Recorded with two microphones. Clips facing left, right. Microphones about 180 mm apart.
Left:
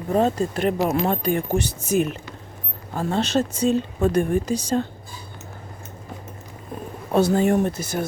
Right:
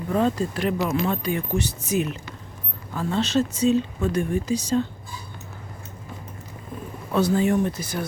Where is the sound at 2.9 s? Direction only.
45° left (ahead or behind).